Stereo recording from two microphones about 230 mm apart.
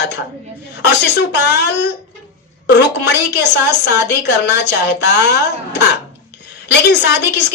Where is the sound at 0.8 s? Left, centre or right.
Left.